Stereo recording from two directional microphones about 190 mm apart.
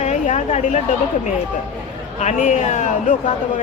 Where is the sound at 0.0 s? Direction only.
35° left (ahead or behind).